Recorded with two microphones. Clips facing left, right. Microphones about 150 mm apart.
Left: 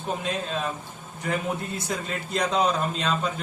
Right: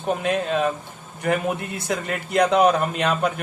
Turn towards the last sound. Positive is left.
turn(degrees=-65)  # may be behind; listen again after turning